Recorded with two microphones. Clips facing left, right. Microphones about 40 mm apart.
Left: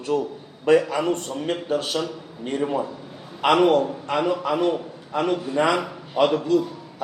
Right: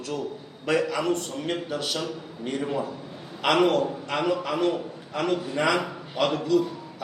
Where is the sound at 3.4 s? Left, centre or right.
Left.